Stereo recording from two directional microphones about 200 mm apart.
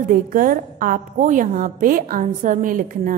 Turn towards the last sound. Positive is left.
turn(degrees=-45)  # may be behind; listen again after turning